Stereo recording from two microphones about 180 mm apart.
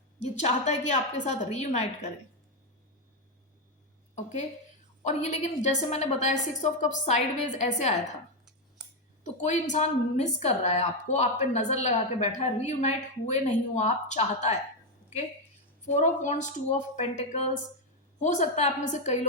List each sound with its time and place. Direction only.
0.3 s a woman's voice: 40° left (ahead or behind)
4.1 s a woman's voice: 40° left (ahead or behind)
9.2 s a woman's voice: 40° left (ahead or behind)
16.0 s a woman's voice: 40° left (ahead or behind)